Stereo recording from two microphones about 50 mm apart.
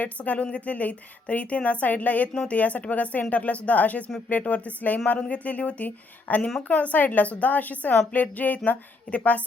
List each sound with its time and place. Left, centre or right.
0.0 s a woman's voice: left
2.3 s a woman's voice: centre
2.6 s a woman's voice: left